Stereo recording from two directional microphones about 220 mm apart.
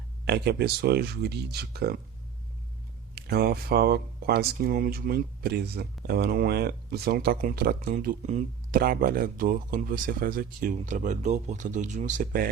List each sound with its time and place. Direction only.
0.3 s speech: 45° right (ahead or behind)
3.2 s speech: 45° right (ahead or behind)